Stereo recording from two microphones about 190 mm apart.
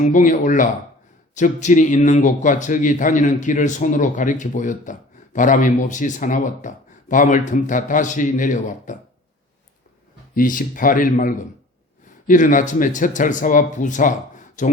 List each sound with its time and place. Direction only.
0.0 s a man's voice: 40° left (ahead or behind)
10.3 s speech: 45° left (ahead or behind)